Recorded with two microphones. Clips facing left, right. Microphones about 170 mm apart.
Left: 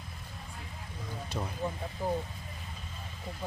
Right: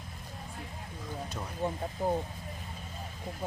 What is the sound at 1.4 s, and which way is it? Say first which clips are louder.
Speech: left 4 dB; 10° left (ahead or behind).